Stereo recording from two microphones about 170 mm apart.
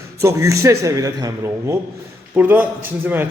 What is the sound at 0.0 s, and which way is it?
A man's voice, 15° right (ahead or behind).